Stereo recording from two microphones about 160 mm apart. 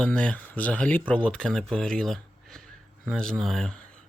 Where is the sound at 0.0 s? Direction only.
5° left (ahead or behind).